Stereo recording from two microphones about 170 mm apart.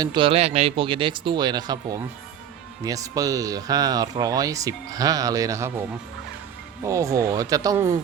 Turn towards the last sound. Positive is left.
turn(degrees=-20)  # may be behind; listen again after turning